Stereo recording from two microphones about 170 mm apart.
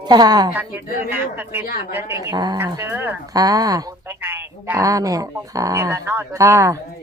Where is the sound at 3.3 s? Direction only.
20° right (ahead or behind).